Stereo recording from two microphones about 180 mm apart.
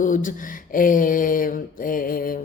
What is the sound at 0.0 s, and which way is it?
Speech, 45° left (ahead or behind).